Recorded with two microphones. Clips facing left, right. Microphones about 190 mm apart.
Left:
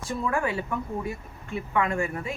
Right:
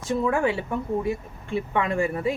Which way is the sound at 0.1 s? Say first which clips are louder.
Right 5 dB; 25° right (ahead or behind).